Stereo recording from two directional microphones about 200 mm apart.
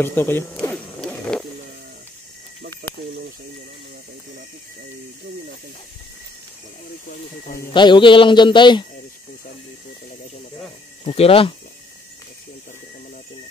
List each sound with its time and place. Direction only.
0.0 s zipper: 10° left (ahead or behind)
2.8 s snake: 50° right (ahead or behind)
7.4 s speech: 45° left (ahead or behind)
7.7 s a man's voice: 25° left (ahead or behind)
11.1 s a man's voice: 30° left (ahead or behind)